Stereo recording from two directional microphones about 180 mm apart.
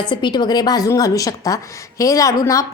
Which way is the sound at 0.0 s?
25° left (ahead or behind).